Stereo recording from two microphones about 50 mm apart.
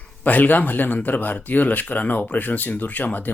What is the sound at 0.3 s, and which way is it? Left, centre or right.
Speech, left.